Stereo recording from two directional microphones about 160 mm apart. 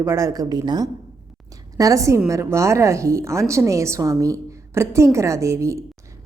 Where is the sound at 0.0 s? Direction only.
15° right (ahead or behind).